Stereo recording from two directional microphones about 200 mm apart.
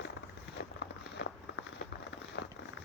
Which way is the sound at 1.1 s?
65° left (ahead or behind).